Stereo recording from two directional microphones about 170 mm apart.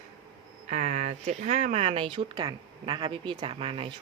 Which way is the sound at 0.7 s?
50° right (ahead or behind).